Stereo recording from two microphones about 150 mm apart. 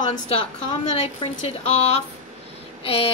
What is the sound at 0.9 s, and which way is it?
Speech, 40° left (ahead or behind).